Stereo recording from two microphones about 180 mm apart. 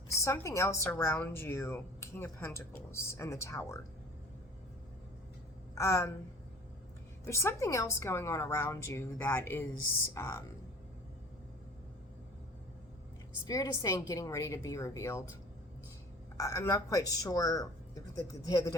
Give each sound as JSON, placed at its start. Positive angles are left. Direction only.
{"t": 0.1, "sound": "speech", "side_deg": 15}
{"t": 5.7, "sound": "a woman's voice", "side_deg": 15}
{"t": 7.3, "sound": "speech", "side_deg": 15}
{"t": 13.5, "sound": "speech", "side_deg": 20}
{"t": 16.4, "sound": "speech", "side_deg": 20}